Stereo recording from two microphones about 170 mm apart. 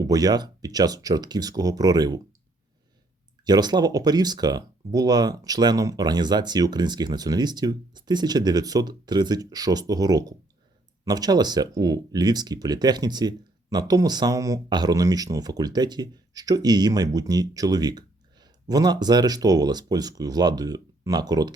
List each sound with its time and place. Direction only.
0.0 s speech: 20° right (ahead or behind)
3.4 s speech: 25° right (ahead or behind)